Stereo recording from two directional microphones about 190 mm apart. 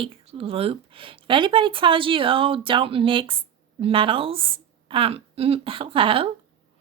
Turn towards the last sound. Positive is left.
turn(degrees=-30)  # may be behind; listen again after turning